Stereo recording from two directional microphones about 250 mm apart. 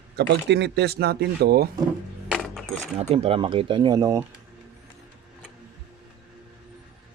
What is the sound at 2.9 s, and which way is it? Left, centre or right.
Speech, right.